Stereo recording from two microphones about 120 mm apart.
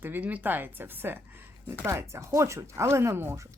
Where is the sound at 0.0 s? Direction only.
15° right (ahead or behind).